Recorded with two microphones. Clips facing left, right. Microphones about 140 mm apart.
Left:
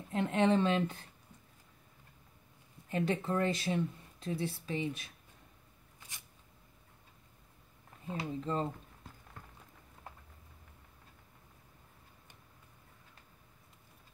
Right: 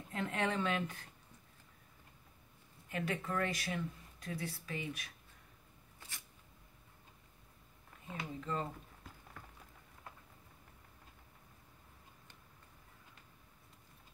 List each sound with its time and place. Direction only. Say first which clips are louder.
0.1 s speech: left 8 dB; 25° left (ahead or behind)
2.9 s speech: left 6 dB; 30° left (ahead or behind)
8.1 s speech: left 5 dB; 30° left (ahead or behind)